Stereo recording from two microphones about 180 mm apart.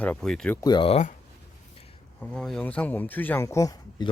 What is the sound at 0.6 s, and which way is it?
Speech, 25° left (ahead or behind).